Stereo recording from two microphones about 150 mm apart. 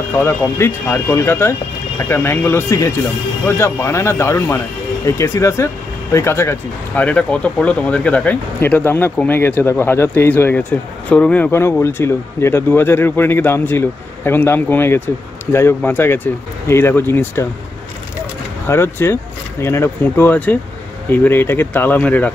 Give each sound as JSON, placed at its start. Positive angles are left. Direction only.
{"t": 0.2, "sound": "speech", "side_deg": 15}
{"t": 18.7, "sound": "speech", "side_deg": 15}